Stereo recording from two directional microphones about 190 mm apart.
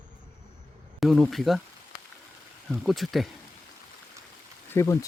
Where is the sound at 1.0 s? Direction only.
Centre (ahead or behind).